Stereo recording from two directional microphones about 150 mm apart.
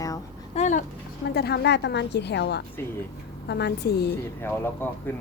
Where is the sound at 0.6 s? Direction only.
55° left (ahead or behind).